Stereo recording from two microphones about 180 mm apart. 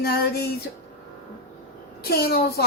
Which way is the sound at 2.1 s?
60° left (ahead or behind).